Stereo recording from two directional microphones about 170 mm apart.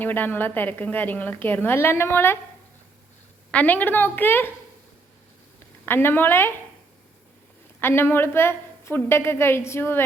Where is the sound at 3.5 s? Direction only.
10° left (ahead or behind).